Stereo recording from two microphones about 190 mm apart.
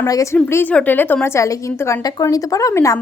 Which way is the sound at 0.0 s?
15° left (ahead or behind).